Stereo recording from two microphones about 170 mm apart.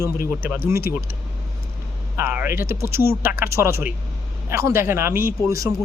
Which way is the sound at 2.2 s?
15° right (ahead or behind).